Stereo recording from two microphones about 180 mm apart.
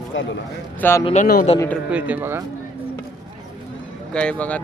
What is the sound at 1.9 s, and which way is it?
Speech, 10° right (ahead or behind).